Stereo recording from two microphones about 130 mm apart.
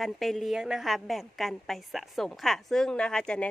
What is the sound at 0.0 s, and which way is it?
A woman's voice, centre (ahead or behind).